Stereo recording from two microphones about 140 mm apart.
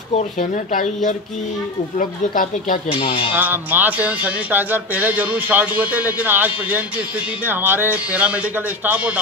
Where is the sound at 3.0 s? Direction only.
40° left (ahead or behind).